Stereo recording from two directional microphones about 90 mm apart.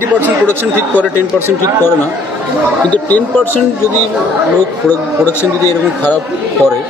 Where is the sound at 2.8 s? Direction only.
20° left (ahead or behind).